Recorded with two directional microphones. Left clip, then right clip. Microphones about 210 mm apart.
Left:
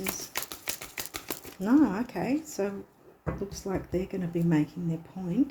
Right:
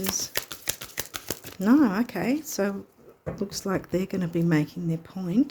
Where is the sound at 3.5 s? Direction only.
55° right (ahead or behind).